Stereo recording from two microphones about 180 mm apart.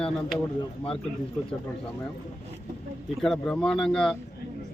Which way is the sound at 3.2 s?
5° left (ahead or behind).